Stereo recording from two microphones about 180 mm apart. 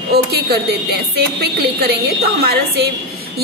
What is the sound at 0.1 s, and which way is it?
A woman's voice, 60° right (ahead or behind).